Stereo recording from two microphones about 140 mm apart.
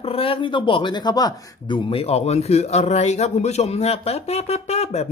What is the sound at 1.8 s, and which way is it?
Speech, 45° left (ahead or behind).